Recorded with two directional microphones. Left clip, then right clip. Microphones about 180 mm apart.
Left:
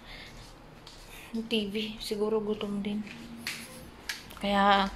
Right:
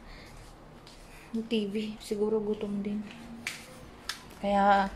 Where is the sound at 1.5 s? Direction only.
10° right (ahead or behind).